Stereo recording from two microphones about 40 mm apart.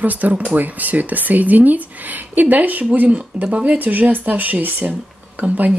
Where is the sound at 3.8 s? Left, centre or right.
Right.